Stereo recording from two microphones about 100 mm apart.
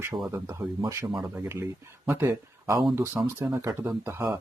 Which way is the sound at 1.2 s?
25° right (ahead or behind).